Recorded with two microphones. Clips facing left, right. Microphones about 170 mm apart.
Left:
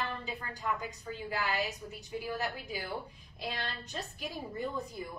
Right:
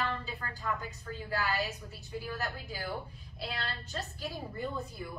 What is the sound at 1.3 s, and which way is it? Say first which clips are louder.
A woman's voice: right 1 dB; 20° left (ahead or behind).